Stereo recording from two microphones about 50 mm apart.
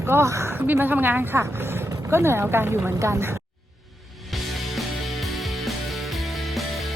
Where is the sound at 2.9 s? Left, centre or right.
Right.